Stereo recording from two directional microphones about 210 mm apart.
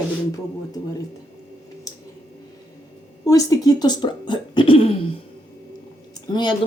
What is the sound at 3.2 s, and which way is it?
Speech, 15° left (ahead or behind).